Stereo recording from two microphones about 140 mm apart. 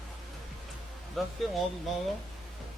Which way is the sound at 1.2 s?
Centre (ahead or behind).